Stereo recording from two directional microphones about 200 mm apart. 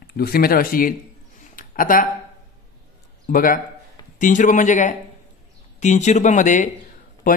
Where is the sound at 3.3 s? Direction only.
45° left (ahead or behind).